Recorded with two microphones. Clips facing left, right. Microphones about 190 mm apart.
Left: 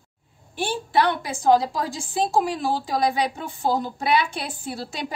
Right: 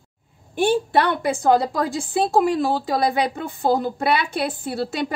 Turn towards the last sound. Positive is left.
turn(degrees=-60)  # may be behind; listen again after turning